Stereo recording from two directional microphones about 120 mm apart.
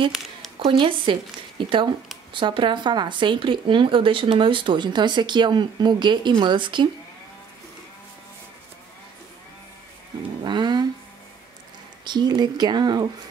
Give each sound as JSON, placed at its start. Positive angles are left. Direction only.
{"t": 0.7, "sound": "speech", "side_deg": -45}
{"t": 10.4, "sound": "a sound", "side_deg": -40}
{"t": 12.0, "sound": "speech", "side_deg": -40}